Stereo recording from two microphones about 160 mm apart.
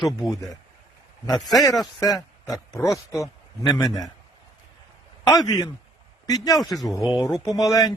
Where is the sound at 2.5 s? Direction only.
Centre (ahead or behind).